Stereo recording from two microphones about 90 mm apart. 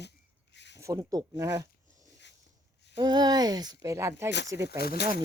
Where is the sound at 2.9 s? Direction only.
50° right (ahead or behind).